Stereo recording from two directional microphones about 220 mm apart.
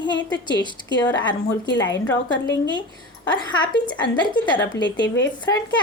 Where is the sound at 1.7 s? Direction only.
55° left (ahead or behind).